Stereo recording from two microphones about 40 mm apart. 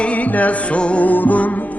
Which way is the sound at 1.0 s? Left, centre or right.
Left.